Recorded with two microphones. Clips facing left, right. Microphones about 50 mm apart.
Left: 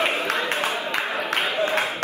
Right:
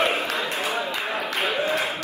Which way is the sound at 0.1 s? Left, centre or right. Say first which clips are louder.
Left 2 dB; left.